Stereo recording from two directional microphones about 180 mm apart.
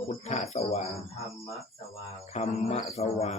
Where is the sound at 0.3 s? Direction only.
40° left (ahead or behind).